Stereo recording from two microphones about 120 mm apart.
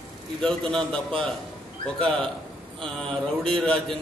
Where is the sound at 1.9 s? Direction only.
50° right (ahead or behind).